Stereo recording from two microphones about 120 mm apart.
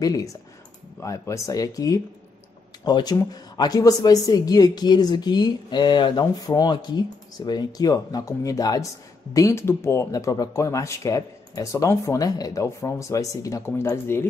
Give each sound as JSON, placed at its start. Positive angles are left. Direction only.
{"t": 0.0, "sound": "speech", "side_deg": 30}